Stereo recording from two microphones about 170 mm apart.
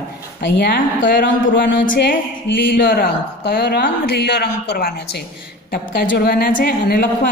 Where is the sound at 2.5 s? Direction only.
90° left.